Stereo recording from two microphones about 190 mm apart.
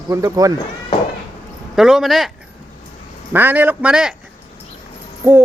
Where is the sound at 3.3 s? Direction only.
10° right (ahead or behind).